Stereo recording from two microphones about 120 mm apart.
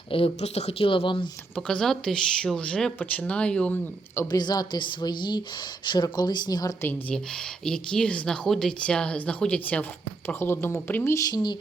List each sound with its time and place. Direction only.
0.1 s speech: 50° left (ahead or behind)
1.5 s speech: 5° left (ahead or behind)
4.3 s a woman's voice: 35° left (ahead or behind)
6.8 s speech: 5° left (ahead or behind)